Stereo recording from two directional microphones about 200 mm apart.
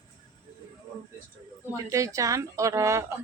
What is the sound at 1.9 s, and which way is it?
Speech, 15° right (ahead or behind).